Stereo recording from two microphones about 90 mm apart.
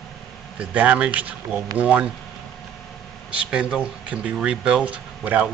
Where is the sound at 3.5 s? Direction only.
10° right (ahead or behind).